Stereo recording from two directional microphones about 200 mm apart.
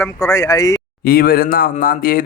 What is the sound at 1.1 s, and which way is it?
Speech, 45° left (ahead or behind).